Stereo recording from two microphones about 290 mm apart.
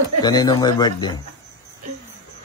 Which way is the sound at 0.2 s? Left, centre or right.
Centre.